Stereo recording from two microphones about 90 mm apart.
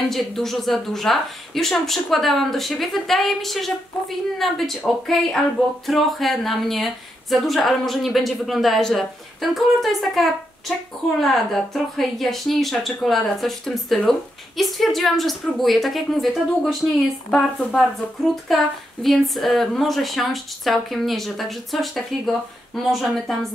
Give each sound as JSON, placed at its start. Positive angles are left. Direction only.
{"t": 0.1, "sound": "speech", "side_deg": 0}